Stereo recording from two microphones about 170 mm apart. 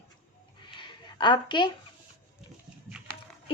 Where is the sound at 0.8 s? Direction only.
30° left (ahead or behind).